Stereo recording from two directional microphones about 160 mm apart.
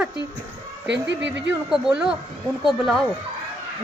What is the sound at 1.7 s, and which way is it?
Speech, 5° right (ahead or behind).